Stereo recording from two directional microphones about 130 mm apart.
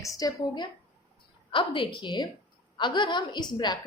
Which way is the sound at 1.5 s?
40° left (ahead or behind).